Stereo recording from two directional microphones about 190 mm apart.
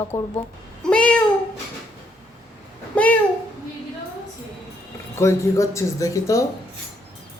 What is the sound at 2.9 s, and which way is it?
Speech, 5° left (ahead or behind).